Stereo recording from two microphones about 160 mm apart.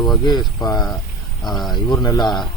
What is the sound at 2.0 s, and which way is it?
Speech, 25° left (ahead or behind).